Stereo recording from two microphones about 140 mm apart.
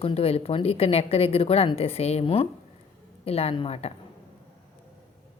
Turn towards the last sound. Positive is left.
turn(degrees=45)  # may be behind; listen again after turning